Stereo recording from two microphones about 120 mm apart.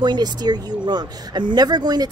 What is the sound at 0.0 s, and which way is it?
Speech, 35° right (ahead or behind).